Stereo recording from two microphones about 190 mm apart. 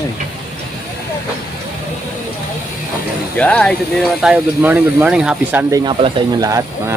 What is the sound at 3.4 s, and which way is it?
Speech, 5° left (ahead or behind).